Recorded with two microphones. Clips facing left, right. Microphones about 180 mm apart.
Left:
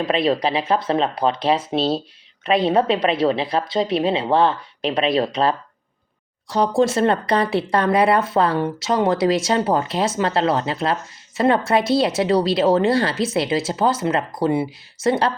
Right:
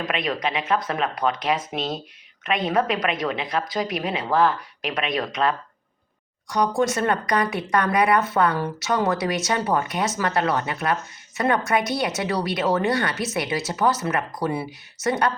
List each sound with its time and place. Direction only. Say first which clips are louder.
0.0 s a woman's voice: left 7 dB; 30° left (ahead or behind)